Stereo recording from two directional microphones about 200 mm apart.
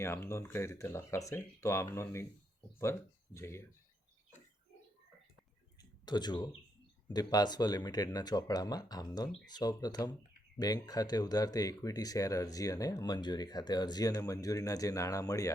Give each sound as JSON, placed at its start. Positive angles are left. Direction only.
{"t": 0.0, "sound": "speech", "side_deg": 15}
{"t": 3.3, "sound": "speech", "side_deg": 15}
{"t": 6.1, "sound": "speech", "side_deg": 20}